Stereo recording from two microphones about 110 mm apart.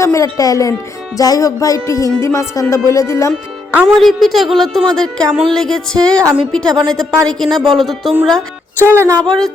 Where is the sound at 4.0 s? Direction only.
Centre (ahead or behind).